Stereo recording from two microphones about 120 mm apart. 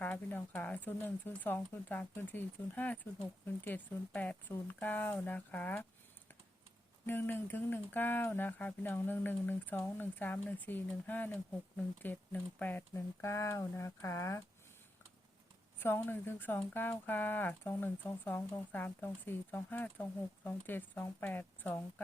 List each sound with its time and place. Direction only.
0.0 s speech: 15° left (ahead or behind)
7.1 s speech: 15° left (ahead or behind)
15.8 s speech: 20° left (ahead or behind)